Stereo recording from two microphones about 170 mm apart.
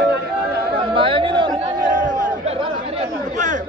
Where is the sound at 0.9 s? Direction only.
30° right (ahead or behind).